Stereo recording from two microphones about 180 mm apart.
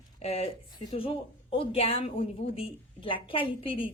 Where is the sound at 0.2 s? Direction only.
35° left (ahead or behind).